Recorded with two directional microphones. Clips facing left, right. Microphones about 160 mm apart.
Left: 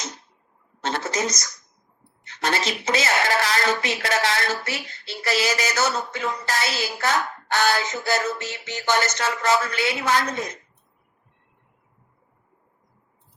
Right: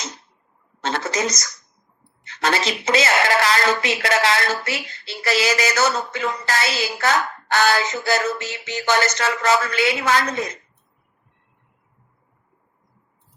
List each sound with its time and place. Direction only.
0.8 s a woman's voice: 90° right